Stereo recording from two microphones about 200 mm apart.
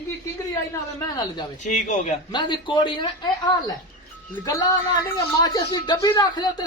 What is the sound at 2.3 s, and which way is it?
Speech, 20° left (ahead or behind).